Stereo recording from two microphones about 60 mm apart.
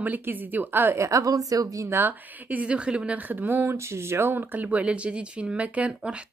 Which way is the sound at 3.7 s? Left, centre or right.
Right.